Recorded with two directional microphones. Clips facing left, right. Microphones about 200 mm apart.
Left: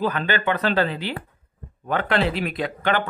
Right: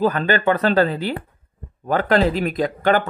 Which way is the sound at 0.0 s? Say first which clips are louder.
Right 5 dB; 45° right (ahead or behind).